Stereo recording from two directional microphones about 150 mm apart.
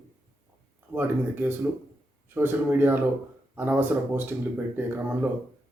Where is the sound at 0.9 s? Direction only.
15° right (ahead or behind).